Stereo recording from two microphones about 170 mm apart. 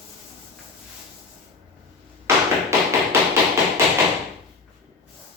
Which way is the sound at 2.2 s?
15° right (ahead or behind).